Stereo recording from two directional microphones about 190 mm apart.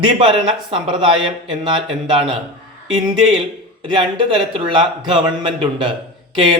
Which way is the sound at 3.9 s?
25° right (ahead or behind).